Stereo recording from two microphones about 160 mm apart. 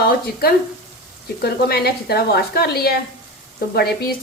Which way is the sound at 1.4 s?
80° left.